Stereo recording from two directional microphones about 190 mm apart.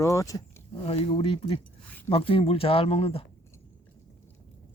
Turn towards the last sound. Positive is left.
turn(degrees=30)  # may be behind; listen again after turning